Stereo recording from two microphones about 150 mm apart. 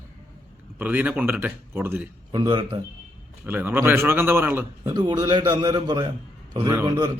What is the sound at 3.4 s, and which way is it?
A man's voice, 15° right (ahead or behind).